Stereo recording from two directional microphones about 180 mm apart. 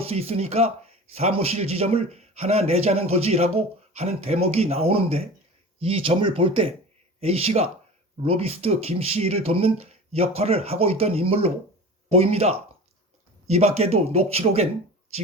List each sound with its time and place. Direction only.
0.0 s speech: 35° right (ahead or behind)